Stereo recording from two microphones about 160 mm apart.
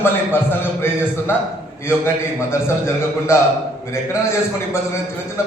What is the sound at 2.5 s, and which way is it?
A man's voice, 15° left (ahead or behind).